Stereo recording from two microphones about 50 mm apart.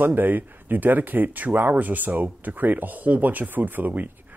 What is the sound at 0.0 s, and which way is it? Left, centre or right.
Speech, right.